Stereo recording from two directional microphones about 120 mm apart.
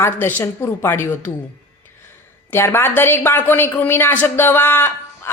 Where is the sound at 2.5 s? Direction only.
20° left (ahead or behind).